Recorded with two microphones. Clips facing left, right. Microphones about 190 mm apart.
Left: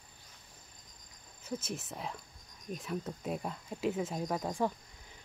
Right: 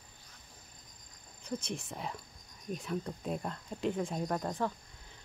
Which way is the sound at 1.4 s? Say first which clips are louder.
Right 1 dB; 5° left (ahead or behind).